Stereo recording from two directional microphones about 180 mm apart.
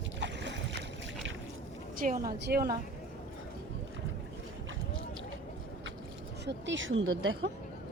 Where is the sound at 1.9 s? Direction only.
50° right (ahead or behind).